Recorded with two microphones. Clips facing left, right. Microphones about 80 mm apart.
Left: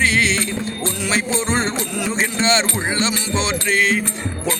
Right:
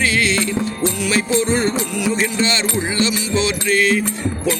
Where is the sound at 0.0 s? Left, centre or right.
Left.